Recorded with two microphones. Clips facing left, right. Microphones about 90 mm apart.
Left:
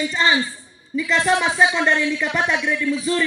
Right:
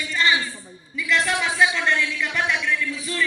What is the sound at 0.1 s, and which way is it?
A man's voice, 25° left (ahead or behind).